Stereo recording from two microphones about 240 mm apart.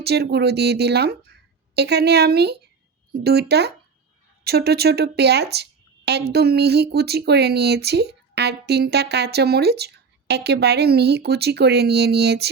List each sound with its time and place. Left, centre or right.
0.0 s a woman's voice: right